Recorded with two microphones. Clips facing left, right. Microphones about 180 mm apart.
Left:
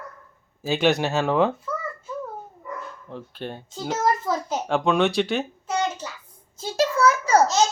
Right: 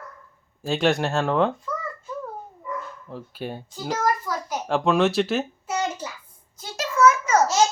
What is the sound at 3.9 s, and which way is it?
Speech, 25° left (ahead or behind).